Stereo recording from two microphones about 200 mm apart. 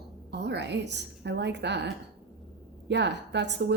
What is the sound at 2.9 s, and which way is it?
Speech, 60° right (ahead or behind).